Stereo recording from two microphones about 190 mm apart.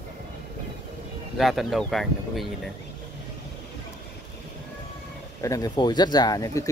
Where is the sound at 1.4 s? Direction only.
Centre (ahead or behind).